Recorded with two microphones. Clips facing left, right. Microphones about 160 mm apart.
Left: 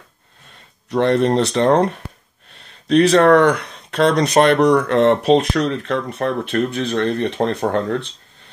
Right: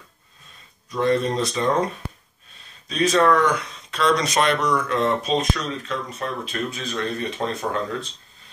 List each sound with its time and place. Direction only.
0.8 s speech: 70° left (ahead or behind)